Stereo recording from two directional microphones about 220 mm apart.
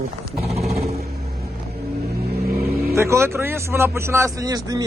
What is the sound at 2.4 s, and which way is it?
Vehicle, 45° right (ahead or behind).